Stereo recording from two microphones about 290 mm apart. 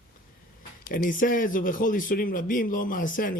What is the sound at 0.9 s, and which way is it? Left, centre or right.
A man's voice, left.